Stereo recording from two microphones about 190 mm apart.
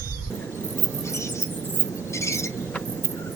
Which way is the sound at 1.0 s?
15° left (ahead or behind).